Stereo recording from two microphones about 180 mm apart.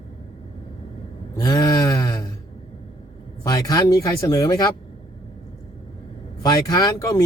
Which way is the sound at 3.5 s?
20° left (ahead or behind).